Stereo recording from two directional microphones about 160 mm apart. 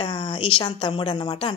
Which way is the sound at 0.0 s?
30° left (ahead or behind).